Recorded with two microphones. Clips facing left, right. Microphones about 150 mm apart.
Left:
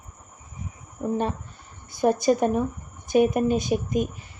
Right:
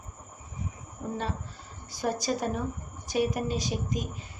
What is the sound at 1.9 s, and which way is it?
Speech, 55° left (ahead or behind).